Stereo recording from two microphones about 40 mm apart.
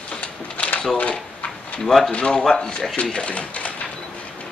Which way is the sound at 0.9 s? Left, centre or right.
Left.